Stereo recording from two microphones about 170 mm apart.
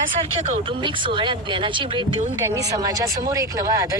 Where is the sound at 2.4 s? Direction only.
20° right (ahead or behind).